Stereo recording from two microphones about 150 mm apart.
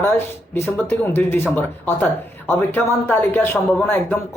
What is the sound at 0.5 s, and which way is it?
Speech, 15° left (ahead or behind).